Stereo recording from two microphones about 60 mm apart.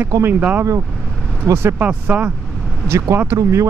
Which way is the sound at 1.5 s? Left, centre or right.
Right.